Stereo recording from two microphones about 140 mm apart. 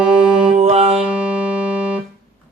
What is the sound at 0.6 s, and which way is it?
Music, 45° right (ahead or behind).